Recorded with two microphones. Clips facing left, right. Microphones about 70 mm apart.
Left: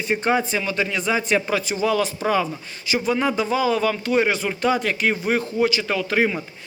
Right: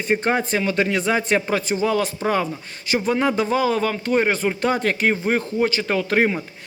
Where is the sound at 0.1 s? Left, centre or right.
Right.